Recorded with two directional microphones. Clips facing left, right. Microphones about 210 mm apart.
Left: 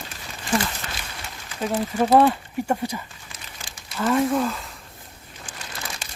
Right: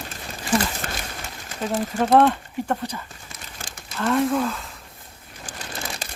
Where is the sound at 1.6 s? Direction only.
Centre (ahead or behind).